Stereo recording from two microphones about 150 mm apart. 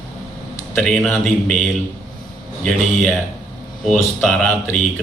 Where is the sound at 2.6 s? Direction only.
Centre (ahead or behind).